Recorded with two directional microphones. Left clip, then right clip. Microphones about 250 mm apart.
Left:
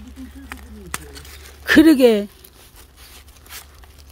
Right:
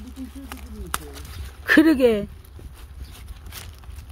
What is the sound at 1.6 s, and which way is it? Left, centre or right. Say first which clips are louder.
Speech: left 4 dB; left.